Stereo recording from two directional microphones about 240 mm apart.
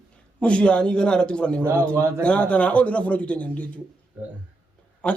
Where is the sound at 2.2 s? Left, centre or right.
Centre.